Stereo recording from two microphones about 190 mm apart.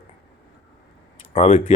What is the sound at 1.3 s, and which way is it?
Speech, 40° left (ahead or behind).